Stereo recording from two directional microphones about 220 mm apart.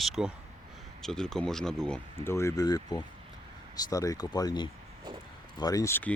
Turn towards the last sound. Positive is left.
turn(degrees=10)  # may be behind; listen again after turning